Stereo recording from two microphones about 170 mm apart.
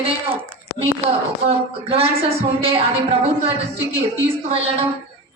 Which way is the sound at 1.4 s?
35° right (ahead or behind).